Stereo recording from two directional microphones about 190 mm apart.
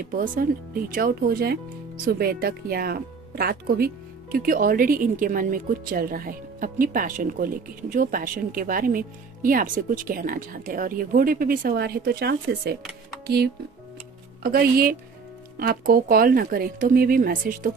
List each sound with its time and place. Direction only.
0.0 s speech: 45° right (ahead or behind)
14.4 s speech: 55° right (ahead or behind)